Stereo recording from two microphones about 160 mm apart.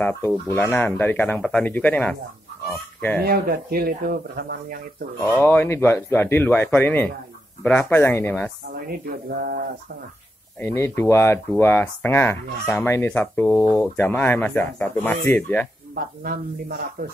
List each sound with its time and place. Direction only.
0.0 s speech: 15° left (ahead or behind)
3.3 s speech: 75° right (ahead or behind)
5.2 s speech: 15° left (ahead or behind)
8.8 s speech: 75° right (ahead or behind)
10.6 s speech: 15° left (ahead or behind)
15.9 s speech: 70° right (ahead or behind)